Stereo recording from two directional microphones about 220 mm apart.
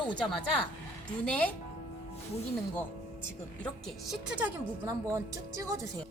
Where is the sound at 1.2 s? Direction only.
5° left (ahead or behind).